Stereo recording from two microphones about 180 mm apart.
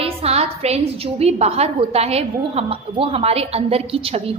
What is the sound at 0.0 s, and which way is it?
A woman's voice, 35° right (ahead or behind).